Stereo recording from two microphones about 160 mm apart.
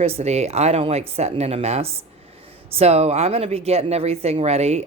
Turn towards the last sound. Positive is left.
turn(degrees=-40)  # may be behind; listen again after turning